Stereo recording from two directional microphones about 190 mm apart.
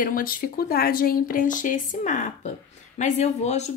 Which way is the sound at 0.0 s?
50° left (ahead or behind).